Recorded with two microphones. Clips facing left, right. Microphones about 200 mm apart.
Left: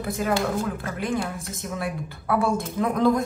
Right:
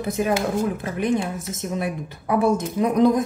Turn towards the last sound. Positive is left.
turn(degrees=-20)  # may be behind; listen again after turning